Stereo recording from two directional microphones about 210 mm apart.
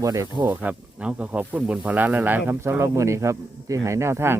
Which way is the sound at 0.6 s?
5° right (ahead or behind).